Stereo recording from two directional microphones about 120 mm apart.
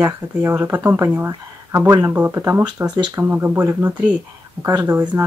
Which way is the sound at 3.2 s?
15° right (ahead or behind).